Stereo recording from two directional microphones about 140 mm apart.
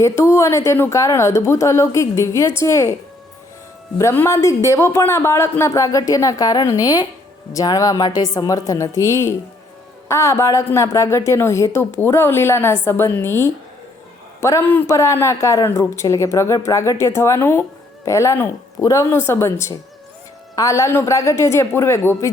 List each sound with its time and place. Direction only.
0.0 s speech: 20° left (ahead or behind)
3.9 s speech: 20° left (ahead or behind)